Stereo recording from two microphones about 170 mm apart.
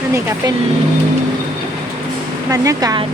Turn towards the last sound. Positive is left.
turn(degrees=-20)  # may be behind; listen again after turning